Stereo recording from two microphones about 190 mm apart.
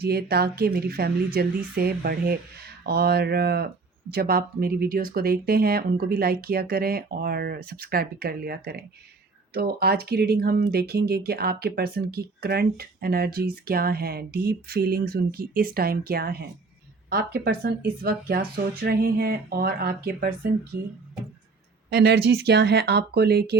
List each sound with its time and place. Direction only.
0.0 s speech: 55° right (ahead or behind)
21.8 s speech: 55° right (ahead or behind)